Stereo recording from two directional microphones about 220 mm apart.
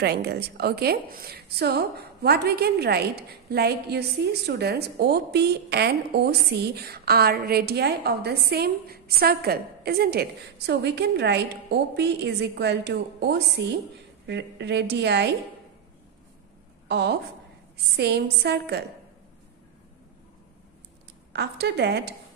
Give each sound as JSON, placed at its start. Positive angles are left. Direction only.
{"t": 0.0, "sound": "a woman's voice", "side_deg": -45}
{"t": 16.8, "sound": "a woman's voice", "side_deg": -50}
{"t": 21.3, "sound": "a woman's voice", "side_deg": -50}